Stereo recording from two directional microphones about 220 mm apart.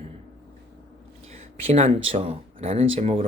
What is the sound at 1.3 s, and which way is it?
Speech, 30° right (ahead or behind).